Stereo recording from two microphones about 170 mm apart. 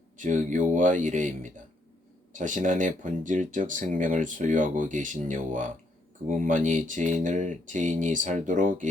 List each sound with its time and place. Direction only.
0.2 s speech: 45° right (ahead or behind)